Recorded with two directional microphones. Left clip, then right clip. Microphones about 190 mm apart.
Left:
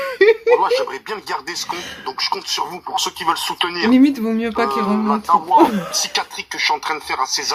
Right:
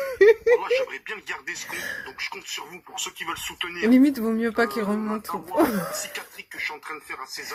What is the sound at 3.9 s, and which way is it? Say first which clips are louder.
Speech: left 3 dB; 35° right (ahead or behind).